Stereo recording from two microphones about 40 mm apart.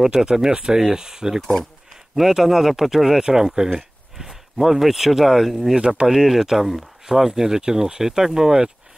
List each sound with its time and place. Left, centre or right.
0.0 s speech: centre
5.8 s speech: centre
7.1 s speech: centre